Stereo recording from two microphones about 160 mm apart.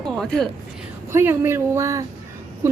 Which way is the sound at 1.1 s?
15° right (ahead or behind).